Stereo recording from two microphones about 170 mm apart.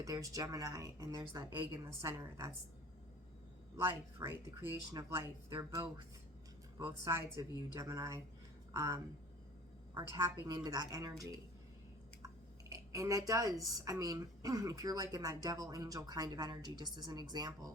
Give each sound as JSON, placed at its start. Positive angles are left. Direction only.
{"t": 0.0, "sound": "speech", "side_deg": -20}
{"t": 3.8, "sound": "speech", "side_deg": -15}
{"t": 10.4, "sound": "speech", "side_deg": -20}
{"t": 12.2, "sound": "speech", "side_deg": -20}